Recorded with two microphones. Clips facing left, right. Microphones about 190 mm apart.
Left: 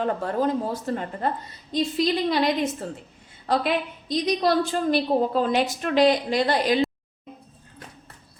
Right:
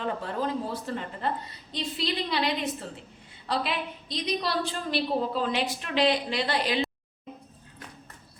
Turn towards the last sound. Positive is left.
turn(degrees=45)  # may be behind; listen again after turning